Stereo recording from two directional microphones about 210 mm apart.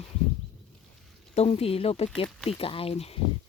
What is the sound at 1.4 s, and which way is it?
Speech, 30° left (ahead or behind).